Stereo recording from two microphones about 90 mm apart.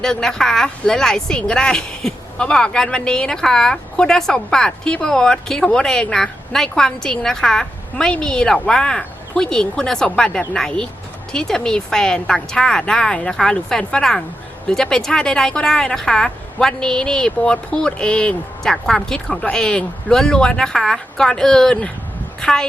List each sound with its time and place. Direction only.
0.0 s a woman's voice: 5° left (ahead or behind)